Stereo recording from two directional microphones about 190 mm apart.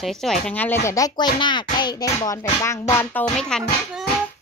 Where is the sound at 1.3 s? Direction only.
25° left (ahead or behind); by 3.7 s 5° left (ahead or behind).